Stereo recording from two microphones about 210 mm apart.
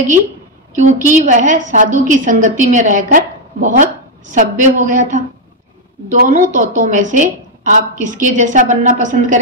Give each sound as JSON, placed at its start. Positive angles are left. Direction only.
{"t": 0.7, "sound": "a woman's voice", "side_deg": -35}